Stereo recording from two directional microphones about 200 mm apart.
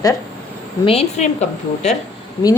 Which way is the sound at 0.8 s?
30° left (ahead or behind).